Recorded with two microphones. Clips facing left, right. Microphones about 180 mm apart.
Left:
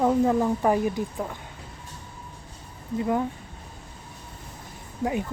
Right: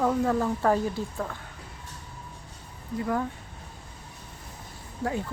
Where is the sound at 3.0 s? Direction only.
20° left (ahead or behind).